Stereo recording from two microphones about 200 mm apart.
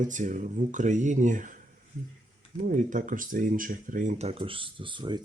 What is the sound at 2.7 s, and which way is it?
Speech, 40° right (ahead or behind).